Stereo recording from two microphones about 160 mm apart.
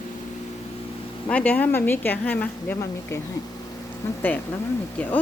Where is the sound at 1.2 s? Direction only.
10° left (ahead or behind).